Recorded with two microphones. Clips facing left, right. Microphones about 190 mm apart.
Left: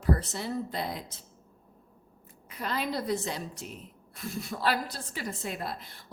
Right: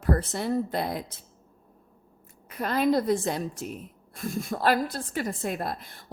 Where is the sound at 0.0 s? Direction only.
55° right (ahead or behind).